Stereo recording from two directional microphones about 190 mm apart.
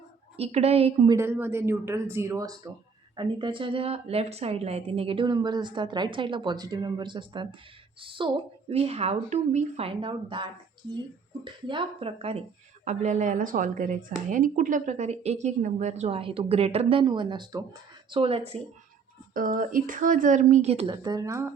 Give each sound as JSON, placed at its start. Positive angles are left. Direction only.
{"t": 0.3, "sound": "speech", "side_deg": -35}
{"t": 1.1, "sound": "a woman's voice", "side_deg": -10}
{"t": 19.3, "sound": "speech", "side_deg": -45}
{"t": 20.9, "sound": "speech", "side_deg": -20}